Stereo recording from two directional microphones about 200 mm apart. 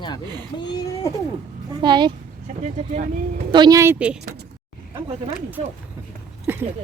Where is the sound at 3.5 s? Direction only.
20° right (ahead or behind).